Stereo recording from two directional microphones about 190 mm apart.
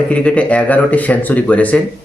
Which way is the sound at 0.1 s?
5° left (ahead or behind).